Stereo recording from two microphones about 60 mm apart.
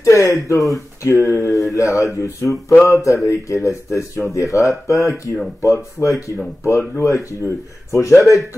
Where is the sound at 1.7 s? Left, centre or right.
Left.